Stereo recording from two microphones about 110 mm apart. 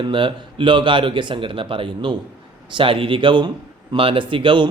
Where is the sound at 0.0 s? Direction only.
50° right (ahead or behind).